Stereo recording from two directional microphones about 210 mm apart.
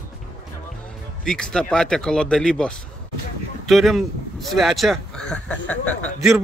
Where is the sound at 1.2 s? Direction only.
5° left (ahead or behind).